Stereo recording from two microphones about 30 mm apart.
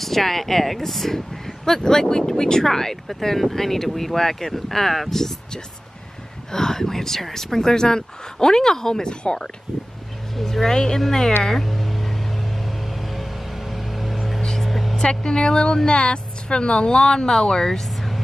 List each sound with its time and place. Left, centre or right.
0.0 s speech: centre
6.5 s speech: centre
7.5 s speech: centre
9.2 s speech: left
10.3 s speech: centre
11.6 s vehicle: centre
15.0 s speech: left
17.8 s vehicle: centre